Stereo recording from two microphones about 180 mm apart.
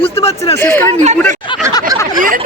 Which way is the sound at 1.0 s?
40° right (ahead or behind).